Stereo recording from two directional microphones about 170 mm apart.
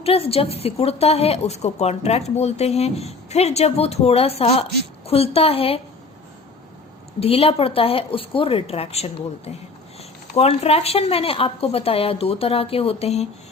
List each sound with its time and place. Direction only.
0.0 s a woman's voice: 35° left (ahead or behind)
7.2 s a woman's voice: 35° left (ahead or behind)